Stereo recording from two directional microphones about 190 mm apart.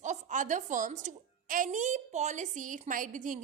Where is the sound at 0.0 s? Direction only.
40° right (ahead or behind).